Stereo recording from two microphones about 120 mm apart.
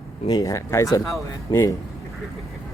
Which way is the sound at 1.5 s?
45° left (ahead or behind).